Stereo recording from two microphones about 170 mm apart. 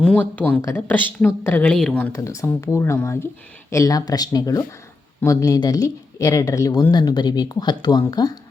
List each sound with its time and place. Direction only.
0.0 s speech: 10° left (ahead or behind)
2.1 s speech: 20° left (ahead or behind)